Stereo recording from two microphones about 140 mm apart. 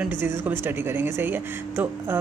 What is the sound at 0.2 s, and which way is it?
Speech, 15° right (ahead or behind).